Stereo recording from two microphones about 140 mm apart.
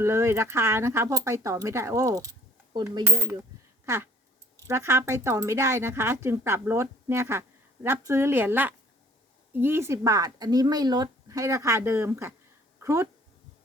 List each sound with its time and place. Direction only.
0.0 s a woman's voice: 20° right (ahead or behind)